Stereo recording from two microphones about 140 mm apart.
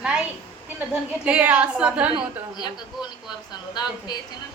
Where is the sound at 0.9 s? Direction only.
10° right (ahead or behind).